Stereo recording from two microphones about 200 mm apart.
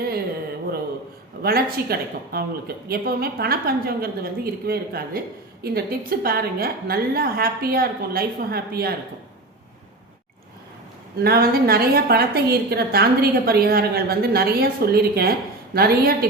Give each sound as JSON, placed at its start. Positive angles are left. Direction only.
{"t": 1.4, "sound": "a woman's voice", "side_deg": -50}
{"t": 11.2, "sound": "a woman's voice", "side_deg": -50}